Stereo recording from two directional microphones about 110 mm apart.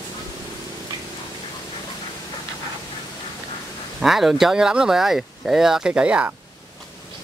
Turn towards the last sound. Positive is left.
turn(degrees=-10)  # may be behind; listen again after turning